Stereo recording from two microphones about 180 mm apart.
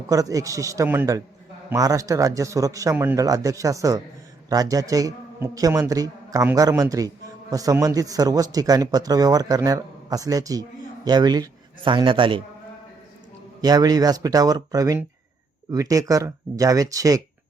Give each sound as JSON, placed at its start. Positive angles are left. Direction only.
{"t": 0.1, "sound": "a man's voice", "side_deg": -20}
{"t": 13.6, "sound": "speech", "side_deg": -20}